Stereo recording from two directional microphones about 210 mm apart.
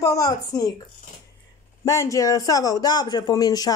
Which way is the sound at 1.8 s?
15° left (ahead or behind).